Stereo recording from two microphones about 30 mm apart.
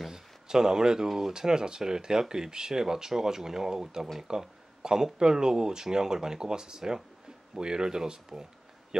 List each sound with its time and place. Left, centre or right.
0.1 s speech: centre
1.3 s speech: right